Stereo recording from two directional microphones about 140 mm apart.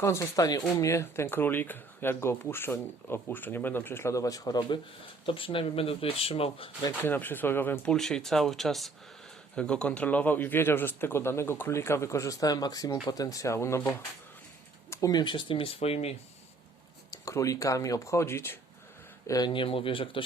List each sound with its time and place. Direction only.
0.0 s speech: 20° left (ahead or behind); by 6.7 s 45° left (ahead or behind)
7.0 s speech: 15° left (ahead or behind)
14.8 s speech: 25° left (ahead or behind); by 16.1 s 45° left (ahead or behind)
17.1 s speech: 25° left (ahead or behind)
19.3 s speech: 30° left (ahead or behind)